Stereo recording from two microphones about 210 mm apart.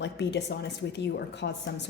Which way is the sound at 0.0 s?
55° left (ahead or behind).